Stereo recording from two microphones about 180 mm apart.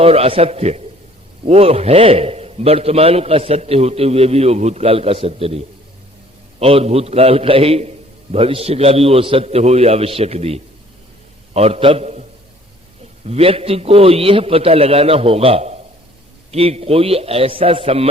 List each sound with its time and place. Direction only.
0.0 s a man's voice: 35° right (ahead or behind)
13.2 s a man's voice: 35° right (ahead or behind)